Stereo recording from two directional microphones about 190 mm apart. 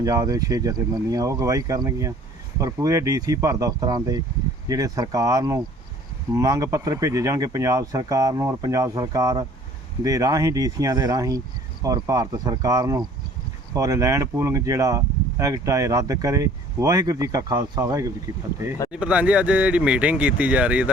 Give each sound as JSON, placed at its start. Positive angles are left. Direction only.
{"t": 0.0, "sound": "speech", "side_deg": -20}